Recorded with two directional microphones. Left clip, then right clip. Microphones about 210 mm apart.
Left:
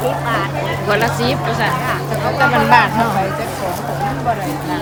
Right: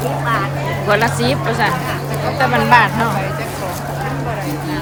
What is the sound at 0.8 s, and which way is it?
Speech, 10° left (ahead or behind).